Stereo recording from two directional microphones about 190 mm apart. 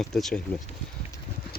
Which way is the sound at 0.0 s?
Centre (ahead or behind).